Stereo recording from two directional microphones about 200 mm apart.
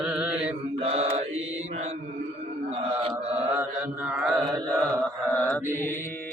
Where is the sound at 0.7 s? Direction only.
30° right (ahead or behind).